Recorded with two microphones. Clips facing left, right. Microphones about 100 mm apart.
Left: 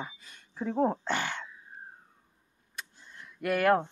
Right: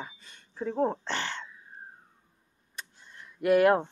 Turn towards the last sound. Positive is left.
turn(degrees=-10)  # may be behind; listen again after turning